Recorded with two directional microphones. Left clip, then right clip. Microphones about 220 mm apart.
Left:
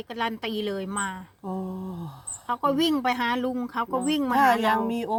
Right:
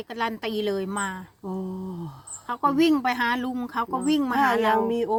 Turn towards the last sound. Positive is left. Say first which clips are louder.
# right 2 dB
turn(degrees=35)  # may be behind; listen again after turning